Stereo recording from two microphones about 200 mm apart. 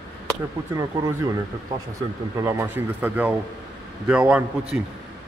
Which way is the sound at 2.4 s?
15° right (ahead or behind).